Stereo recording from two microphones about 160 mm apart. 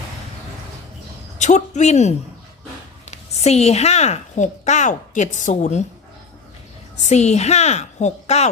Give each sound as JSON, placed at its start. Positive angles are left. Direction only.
{"t": 1.4, "sound": "a woman's voice", "side_deg": 45}
{"t": 6.9, "sound": "a woman's voice", "side_deg": 45}